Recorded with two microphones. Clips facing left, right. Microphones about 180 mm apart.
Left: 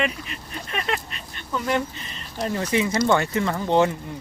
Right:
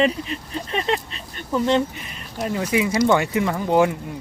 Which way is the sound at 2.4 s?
5° right (ahead or behind).